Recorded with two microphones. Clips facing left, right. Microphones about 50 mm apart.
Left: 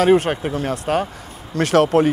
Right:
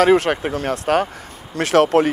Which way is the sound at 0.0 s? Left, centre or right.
Right.